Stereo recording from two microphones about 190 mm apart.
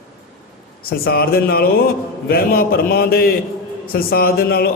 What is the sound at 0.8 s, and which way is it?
A man's voice, 55° left (ahead or behind).